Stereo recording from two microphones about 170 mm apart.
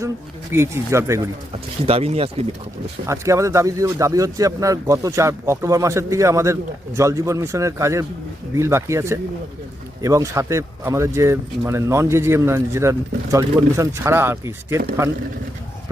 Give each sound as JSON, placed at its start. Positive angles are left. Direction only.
{"t": 0.5, "sound": "speech", "side_deg": -15}
{"t": 1.9, "sound": "speech", "side_deg": -35}
{"t": 3.1, "sound": "speech", "side_deg": -15}